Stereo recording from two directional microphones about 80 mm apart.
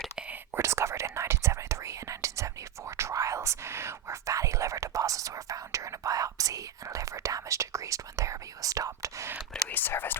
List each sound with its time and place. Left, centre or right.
0.5 s whispering: right
9.6 s whispering: left